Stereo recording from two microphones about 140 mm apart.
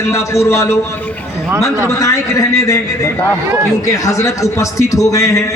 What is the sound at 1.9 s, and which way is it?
A man's voice, 25° left (ahead or behind).